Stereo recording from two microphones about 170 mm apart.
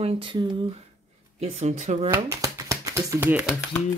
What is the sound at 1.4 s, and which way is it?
Speech, 45° right (ahead or behind).